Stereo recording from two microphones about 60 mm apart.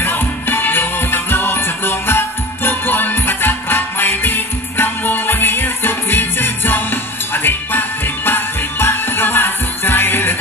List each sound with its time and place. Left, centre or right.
0.0 s music: left